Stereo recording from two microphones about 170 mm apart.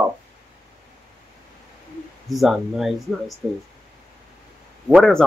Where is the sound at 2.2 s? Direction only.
Centre (ahead or behind).